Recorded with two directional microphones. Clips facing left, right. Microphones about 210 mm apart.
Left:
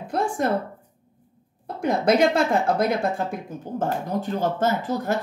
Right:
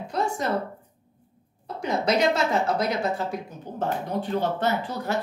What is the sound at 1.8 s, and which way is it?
Speech, 55° left (ahead or behind).